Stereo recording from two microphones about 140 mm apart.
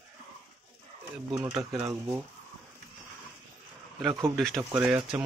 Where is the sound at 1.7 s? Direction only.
15° right (ahead or behind).